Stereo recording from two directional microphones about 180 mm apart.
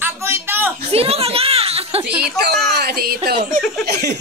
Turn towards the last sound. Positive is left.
turn(degrees=-65)  # may be behind; listen again after turning